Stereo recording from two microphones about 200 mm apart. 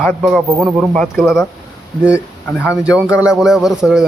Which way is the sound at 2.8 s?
5° right (ahead or behind).